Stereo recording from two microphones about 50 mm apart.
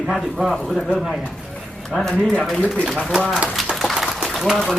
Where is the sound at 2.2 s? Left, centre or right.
Centre.